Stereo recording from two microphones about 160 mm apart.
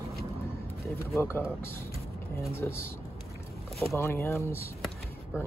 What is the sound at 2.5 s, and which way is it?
Speech, 15° left (ahead or behind).